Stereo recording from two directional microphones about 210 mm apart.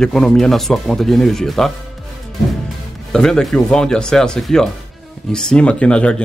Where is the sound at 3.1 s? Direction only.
5° left (ahead or behind).